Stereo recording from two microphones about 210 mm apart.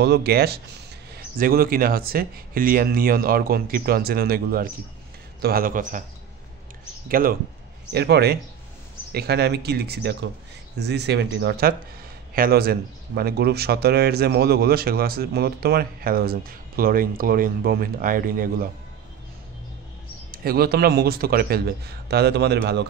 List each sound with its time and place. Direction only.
0.0 s a man's voice: 50° right (ahead or behind)
7.1 s speech: 45° right (ahead or behind)
20.2 s speech: 45° right (ahead or behind)